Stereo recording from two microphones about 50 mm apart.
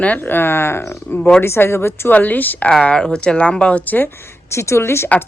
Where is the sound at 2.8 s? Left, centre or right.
Centre.